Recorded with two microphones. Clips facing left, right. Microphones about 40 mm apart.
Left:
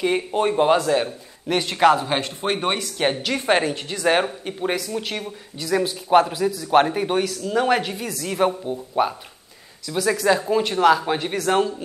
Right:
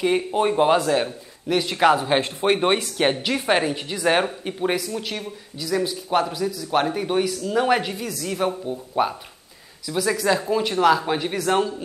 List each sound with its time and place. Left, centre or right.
0.0 s speech: centre
1.5 s speech: centre
2.0 s speech: centre
4.9 s a man's voice: centre
7.4 s speech: centre
8.2 s speech: centre
10.2 s speech: centre